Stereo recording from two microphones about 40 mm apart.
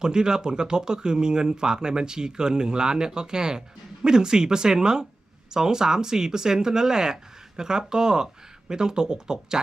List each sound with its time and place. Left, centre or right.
0.0 s speech: centre